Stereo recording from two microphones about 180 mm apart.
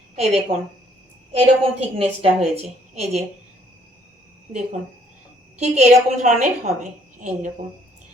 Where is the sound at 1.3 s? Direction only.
35° right (ahead or behind).